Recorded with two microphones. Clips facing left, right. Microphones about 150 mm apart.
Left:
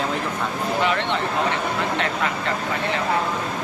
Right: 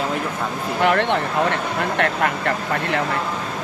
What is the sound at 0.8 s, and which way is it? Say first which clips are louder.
Speech: right 6 dB; 60° right (ahead or behind).